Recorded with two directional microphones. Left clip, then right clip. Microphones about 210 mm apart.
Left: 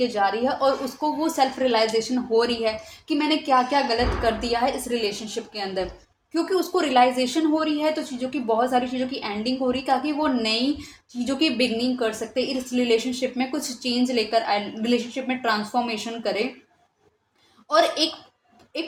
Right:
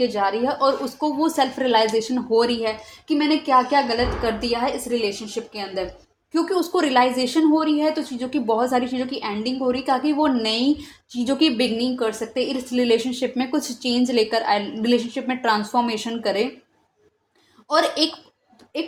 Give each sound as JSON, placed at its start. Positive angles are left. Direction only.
{"t": 0.0, "sound": "speech", "side_deg": -25}
{"t": 17.7, "sound": "speech", "side_deg": -25}